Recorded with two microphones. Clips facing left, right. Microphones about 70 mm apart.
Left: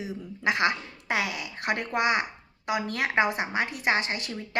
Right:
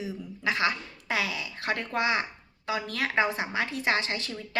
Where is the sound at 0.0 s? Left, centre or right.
Left.